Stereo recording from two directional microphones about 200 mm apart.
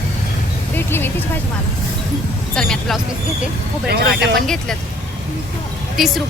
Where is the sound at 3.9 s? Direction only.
55° right (ahead or behind).